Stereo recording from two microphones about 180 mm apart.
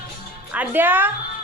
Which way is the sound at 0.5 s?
10° right (ahead or behind).